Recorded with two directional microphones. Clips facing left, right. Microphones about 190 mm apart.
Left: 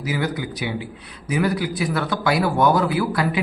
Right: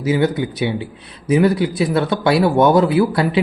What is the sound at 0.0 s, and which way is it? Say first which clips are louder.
A man's voice: right 8 dB; 25° right (ahead or behind).